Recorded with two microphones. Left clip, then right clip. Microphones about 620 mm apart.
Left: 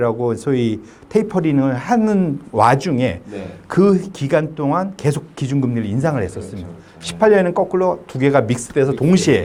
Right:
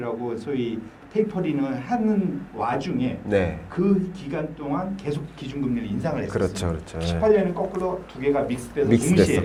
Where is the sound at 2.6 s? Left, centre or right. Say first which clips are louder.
Left 12 dB; left.